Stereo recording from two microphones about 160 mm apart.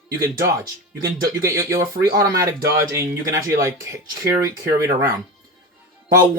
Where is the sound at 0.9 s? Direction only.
65° right (ahead or behind).